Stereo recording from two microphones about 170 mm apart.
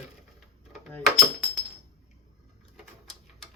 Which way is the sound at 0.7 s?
Centre (ahead or behind).